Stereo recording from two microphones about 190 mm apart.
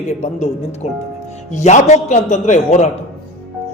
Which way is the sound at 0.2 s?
35° left (ahead or behind).